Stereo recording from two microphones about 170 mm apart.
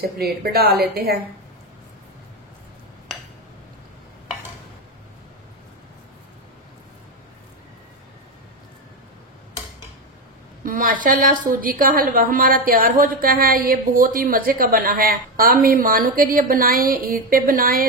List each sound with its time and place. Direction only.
0.2 s a woman's voice: 65° right (ahead or behind)
10.6 s a woman's voice: 55° right (ahead or behind)